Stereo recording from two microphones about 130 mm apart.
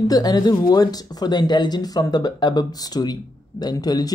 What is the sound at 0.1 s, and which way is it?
Speech, 30° left (ahead or behind).